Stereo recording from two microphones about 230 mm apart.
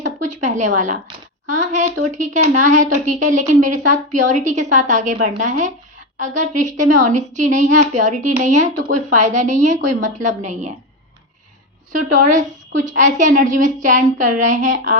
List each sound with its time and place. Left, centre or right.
0.4 s a woman's voice: right
11.9 s a woman's voice: right